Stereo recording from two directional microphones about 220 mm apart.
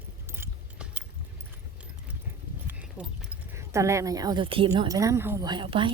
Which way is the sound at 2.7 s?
5° right (ahead or behind).